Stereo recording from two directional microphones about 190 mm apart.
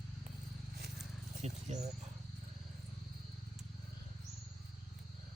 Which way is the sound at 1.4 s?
35° right (ahead or behind).